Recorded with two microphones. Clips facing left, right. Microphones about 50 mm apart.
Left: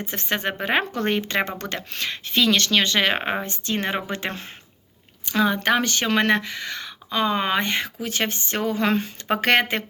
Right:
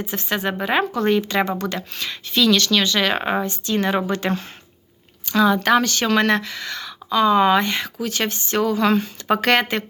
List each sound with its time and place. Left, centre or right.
0.0 s speech: left